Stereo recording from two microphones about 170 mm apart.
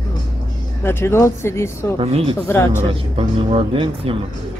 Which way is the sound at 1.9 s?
35° right (ahead or behind).